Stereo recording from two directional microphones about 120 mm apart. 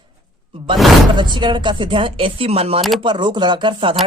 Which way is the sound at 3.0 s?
40° right (ahead or behind).